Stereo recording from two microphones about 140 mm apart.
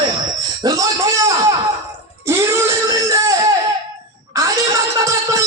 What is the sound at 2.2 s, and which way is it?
Wail, 20° right (ahead or behind).